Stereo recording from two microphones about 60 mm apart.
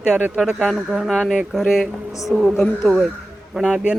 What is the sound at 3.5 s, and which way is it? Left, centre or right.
Speech, centre.